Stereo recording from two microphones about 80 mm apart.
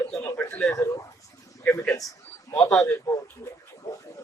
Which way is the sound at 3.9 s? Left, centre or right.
Left.